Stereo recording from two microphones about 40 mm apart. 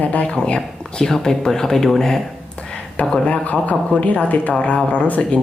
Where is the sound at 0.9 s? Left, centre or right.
Centre.